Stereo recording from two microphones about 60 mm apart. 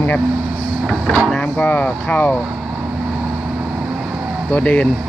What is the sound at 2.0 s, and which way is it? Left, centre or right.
Speech, left.